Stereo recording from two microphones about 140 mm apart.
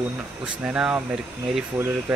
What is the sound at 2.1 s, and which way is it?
Speech, 10° right (ahead or behind).